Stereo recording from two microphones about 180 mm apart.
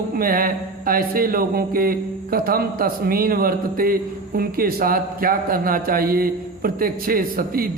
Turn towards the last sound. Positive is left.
turn(degrees=-55)  # may be behind; listen again after turning